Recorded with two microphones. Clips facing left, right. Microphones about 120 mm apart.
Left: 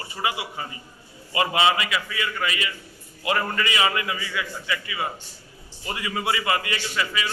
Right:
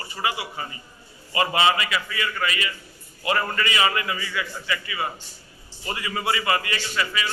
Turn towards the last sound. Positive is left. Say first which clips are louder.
# even
turn(degrees=10)  # may be behind; listen again after turning